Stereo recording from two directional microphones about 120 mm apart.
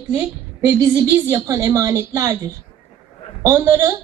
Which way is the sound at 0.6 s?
30° right (ahead or behind).